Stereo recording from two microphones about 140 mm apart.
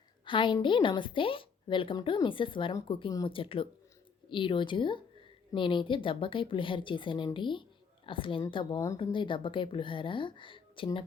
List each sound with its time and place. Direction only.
0.3 s a woman's voice: 35° left (ahead or behind)